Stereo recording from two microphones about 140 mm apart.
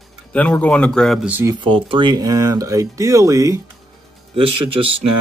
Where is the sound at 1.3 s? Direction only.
20° right (ahead or behind).